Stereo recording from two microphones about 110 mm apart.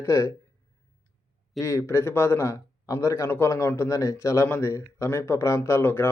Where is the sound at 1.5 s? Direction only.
30° left (ahead or behind).